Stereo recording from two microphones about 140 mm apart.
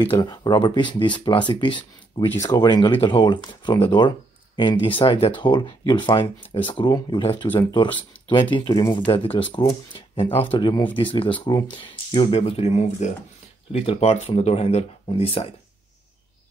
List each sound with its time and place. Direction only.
0.1 s speech: 30° left (ahead or behind)